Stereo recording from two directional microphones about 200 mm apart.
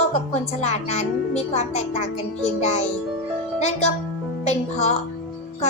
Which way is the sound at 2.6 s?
35° left (ahead or behind).